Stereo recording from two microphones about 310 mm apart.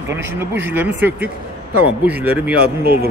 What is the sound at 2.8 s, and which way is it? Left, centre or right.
Speech, right.